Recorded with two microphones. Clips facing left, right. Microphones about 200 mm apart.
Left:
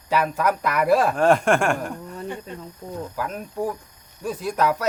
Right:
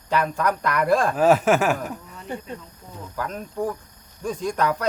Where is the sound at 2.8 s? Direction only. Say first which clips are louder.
Left 9 dB; 50° left (ahead or behind).